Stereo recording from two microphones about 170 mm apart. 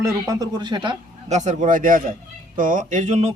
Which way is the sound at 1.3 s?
45° right (ahead or behind).